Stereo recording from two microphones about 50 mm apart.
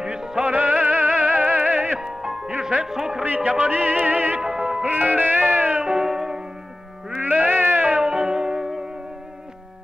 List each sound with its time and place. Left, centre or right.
0.0 s music: centre
2.0 s music: centre
3.3 s music: right
4.4 s music: centre
4.8 s music: right
5.9 s music: centre
7.2 s a sound: right
8.0 s music: centre